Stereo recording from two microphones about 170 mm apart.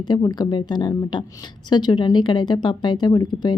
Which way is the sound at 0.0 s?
25° left (ahead or behind).